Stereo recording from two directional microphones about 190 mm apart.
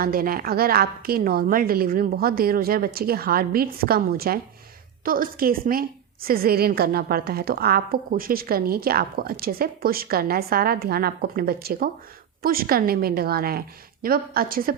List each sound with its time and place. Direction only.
0.0 s a woman's voice: 50° right (ahead or behind)